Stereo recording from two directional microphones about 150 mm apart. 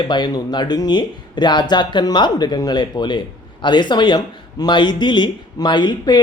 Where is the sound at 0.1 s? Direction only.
30° left (ahead or behind).